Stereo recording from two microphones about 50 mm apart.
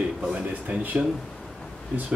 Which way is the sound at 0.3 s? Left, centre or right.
Right.